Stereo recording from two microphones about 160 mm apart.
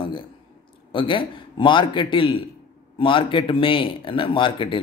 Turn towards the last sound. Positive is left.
turn(degrees=30)  # may be behind; listen again after turning